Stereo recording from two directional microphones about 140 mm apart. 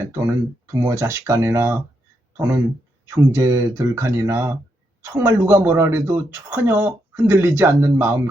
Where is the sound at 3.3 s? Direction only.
20° right (ahead or behind).